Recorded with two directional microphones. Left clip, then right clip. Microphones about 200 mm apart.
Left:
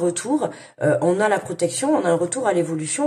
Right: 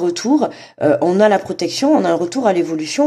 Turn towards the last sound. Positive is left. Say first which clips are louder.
# right 5 dB
turn(degrees=-45)  # may be behind; listen again after turning